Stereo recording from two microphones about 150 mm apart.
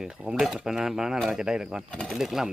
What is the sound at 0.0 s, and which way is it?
Speech, 5° right (ahead or behind).